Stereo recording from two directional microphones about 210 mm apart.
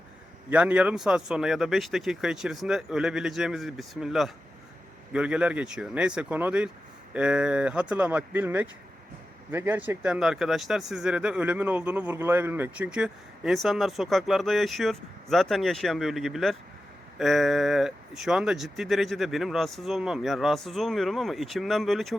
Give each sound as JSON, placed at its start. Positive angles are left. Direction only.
{"t": 0.5, "sound": "speech", "side_deg": -5}